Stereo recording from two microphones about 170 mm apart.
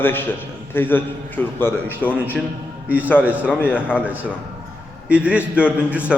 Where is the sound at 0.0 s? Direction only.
10° left (ahead or behind).